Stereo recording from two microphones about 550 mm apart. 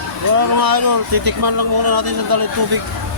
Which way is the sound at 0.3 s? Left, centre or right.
Right.